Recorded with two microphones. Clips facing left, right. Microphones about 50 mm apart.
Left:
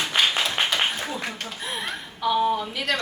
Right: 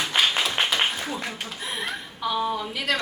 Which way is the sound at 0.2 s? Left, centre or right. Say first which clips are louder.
Even; centre.